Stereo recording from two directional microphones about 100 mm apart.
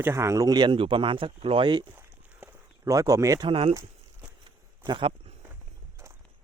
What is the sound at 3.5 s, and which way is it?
Speech, 70° right (ahead or behind).